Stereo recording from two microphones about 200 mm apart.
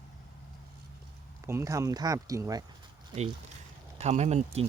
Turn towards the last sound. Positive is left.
turn(degrees=-35)  # may be behind; listen again after turning